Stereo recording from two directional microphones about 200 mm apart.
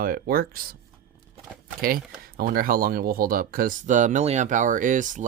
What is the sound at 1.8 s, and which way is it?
Speech, 45° right (ahead or behind).